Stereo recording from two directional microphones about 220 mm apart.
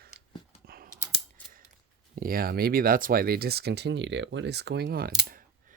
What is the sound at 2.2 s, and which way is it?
Speech, 40° right (ahead or behind).